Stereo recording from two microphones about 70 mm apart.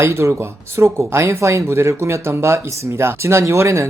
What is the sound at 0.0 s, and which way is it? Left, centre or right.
Speech, right.